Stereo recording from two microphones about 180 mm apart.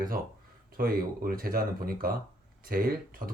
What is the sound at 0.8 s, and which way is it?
Speech, 55° right (ahead or behind).